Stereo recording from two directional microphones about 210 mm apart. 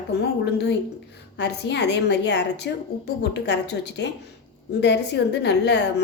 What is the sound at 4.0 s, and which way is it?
A woman's voice, 55° left (ahead or behind).